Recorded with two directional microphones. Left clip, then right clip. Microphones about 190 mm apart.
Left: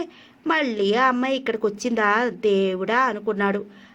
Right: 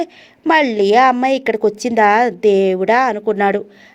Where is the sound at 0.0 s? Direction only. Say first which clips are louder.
Right 9 dB; 30° right (ahead or behind).